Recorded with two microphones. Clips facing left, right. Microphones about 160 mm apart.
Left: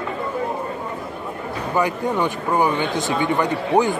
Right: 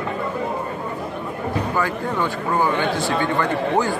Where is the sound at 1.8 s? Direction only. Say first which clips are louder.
Left 6 dB; 20° left (ahead or behind).